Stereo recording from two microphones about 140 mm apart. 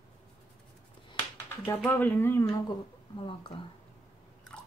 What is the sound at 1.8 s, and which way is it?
Speech, 15° left (ahead or behind).